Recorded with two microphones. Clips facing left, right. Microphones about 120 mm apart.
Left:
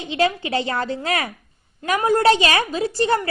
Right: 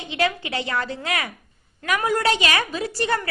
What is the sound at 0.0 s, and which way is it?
A woman's voice, 30° left (ahead or behind).